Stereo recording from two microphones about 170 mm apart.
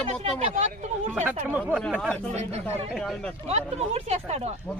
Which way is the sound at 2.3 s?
40° right (ahead or behind).